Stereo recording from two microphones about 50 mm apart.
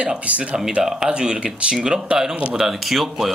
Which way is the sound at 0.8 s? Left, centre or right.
Centre.